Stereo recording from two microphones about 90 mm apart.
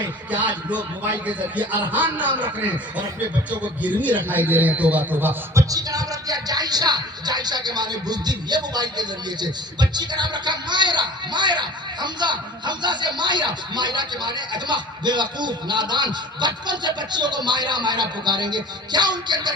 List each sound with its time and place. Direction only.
0.3 s a man's voice: 15° right (ahead or behind)
1.9 s a man's voice: 20° right (ahead or behind)
3.6 s a man's voice: 15° right (ahead or behind)
5.6 s speech: 40° right (ahead or behind)